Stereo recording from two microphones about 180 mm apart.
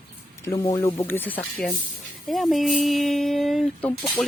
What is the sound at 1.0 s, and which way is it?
Speech, 10° left (ahead or behind).